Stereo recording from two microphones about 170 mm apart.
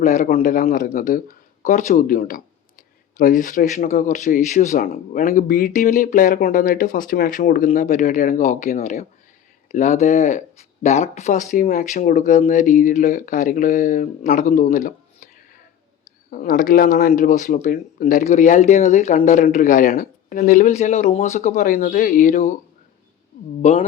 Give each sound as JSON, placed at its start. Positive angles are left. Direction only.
{"t": 0.0, "sound": "speech", "side_deg": 45}
{"t": 16.3, "sound": "speech", "side_deg": 55}